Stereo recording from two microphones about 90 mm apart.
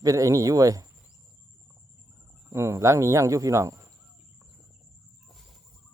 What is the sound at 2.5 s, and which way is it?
Speech, 35° right (ahead or behind).